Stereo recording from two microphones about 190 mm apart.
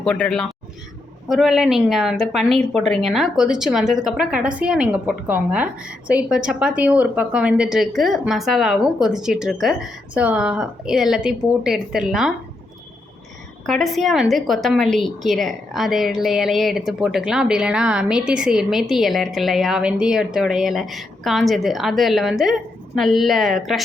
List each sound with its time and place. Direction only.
0.0 s a woman's voice: 5° left (ahead or behind)
13.7 s a woman's voice: centre (ahead or behind)